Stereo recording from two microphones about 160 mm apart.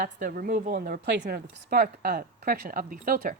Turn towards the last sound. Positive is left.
turn(degrees=-60)  # may be behind; listen again after turning